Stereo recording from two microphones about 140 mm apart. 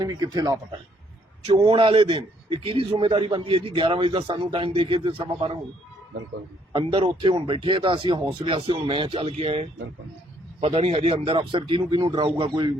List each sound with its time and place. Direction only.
0.0 s speech: 30° right (ahead or behind)
1.5 s a man's voice: 45° right (ahead or behind)
6.7 s a man's voice: 35° right (ahead or behind)